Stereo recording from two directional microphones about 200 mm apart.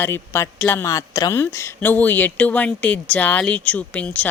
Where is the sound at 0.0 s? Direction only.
10° left (ahead or behind).